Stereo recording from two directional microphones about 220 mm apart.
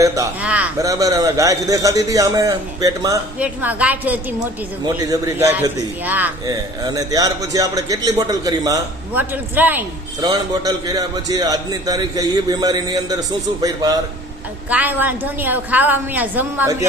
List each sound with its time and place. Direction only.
0.0 s a man's voice: 10° right (ahead or behind)